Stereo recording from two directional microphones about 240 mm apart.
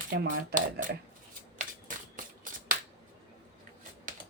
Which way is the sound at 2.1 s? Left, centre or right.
Right.